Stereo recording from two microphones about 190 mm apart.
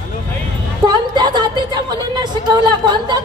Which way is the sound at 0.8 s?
20° right (ahead or behind).